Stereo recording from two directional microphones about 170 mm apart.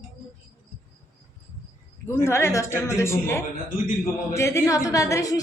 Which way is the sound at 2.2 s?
15° left (ahead or behind).